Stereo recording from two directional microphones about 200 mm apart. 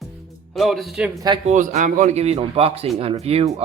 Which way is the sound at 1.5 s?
40° right (ahead or behind).